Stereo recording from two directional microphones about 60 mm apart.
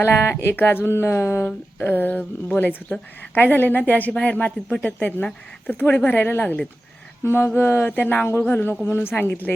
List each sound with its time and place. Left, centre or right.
0.0 s speech: left
1.5 s speech: left